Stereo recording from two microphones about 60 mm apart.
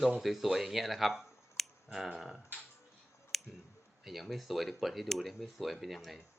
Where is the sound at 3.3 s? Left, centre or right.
Centre.